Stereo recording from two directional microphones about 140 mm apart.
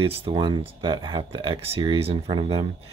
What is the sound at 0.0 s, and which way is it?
Speech, 40° right (ahead or behind).